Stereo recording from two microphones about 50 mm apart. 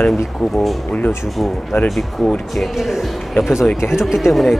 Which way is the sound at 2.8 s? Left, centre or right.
Centre.